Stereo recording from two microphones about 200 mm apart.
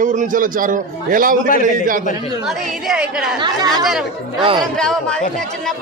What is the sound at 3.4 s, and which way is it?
Speech, 20° right (ahead or behind).